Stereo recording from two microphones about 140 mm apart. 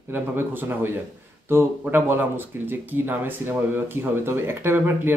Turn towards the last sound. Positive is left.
turn(degrees=-15)  # may be behind; listen again after turning